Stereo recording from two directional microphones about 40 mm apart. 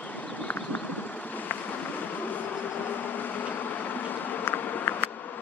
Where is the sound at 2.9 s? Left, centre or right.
Left.